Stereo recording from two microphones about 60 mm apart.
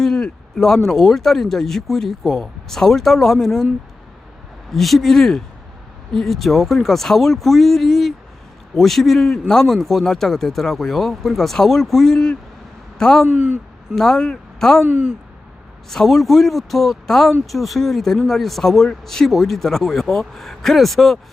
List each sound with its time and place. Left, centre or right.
0.0 s speech: centre
4.7 s speech: centre
13.3 s a man's voice: centre
13.9 s speech: centre
14.8 s a man's voice: centre
15.9 s speech: centre